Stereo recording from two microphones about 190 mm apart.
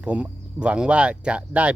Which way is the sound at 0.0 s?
5° right (ahead or behind).